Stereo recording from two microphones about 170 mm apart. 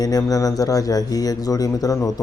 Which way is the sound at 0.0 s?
20° left (ahead or behind).